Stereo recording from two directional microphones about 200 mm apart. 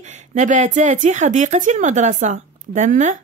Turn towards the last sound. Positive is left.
turn(degrees=-40)  # may be behind; listen again after turning